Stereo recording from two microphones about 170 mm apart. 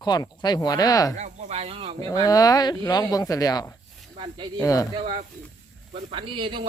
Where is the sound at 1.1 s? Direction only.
40° right (ahead or behind).